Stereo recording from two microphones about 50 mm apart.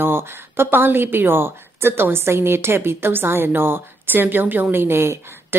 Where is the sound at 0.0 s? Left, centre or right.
Right.